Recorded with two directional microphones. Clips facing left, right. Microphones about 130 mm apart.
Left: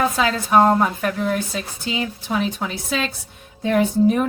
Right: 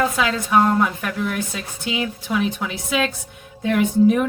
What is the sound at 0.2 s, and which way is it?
A woman's voice, 35° left (ahead or behind).